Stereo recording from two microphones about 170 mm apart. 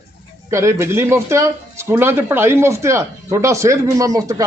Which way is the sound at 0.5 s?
15° right (ahead or behind).